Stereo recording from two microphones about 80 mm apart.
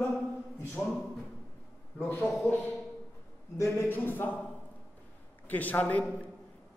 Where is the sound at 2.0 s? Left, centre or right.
Left.